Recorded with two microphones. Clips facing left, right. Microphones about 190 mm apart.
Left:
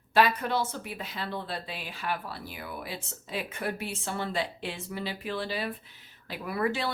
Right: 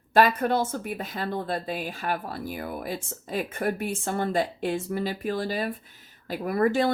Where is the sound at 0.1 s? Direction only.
50° right (ahead or behind).